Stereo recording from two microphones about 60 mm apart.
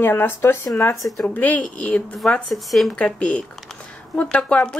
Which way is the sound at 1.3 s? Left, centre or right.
Left.